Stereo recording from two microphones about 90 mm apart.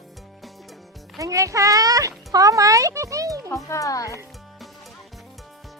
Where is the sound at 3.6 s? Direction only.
35° left (ahead or behind).